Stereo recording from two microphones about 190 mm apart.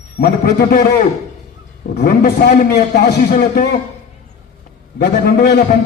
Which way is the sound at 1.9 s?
55° left (ahead or behind).